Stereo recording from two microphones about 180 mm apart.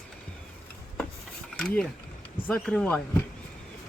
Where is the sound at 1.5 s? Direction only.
5° left (ahead or behind).